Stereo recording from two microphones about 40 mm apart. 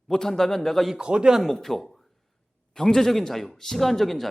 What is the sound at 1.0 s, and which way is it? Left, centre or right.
Speech, right.